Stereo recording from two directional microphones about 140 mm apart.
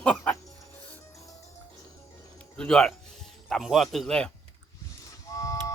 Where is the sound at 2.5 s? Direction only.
5° left (ahead or behind).